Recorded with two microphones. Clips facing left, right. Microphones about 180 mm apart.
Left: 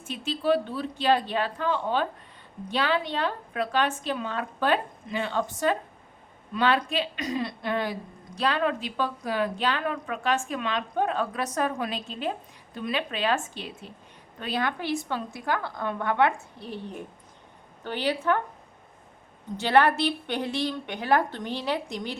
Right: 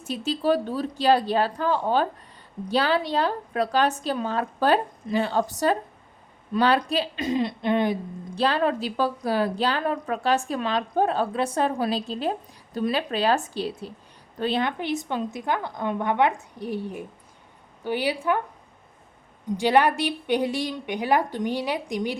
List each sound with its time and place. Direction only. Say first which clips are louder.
0.0 s a woman's voice: right 3 dB; 40° right (ahead or behind); by 7.9 s 20° right (ahead or behind)
8.4 s a woman's voice: right 3 dB; 35° right (ahead or behind); by 18.3 s 10° right (ahead or behind)
19.5 s a woman's voice: right 1 dB; 15° right (ahead or behind)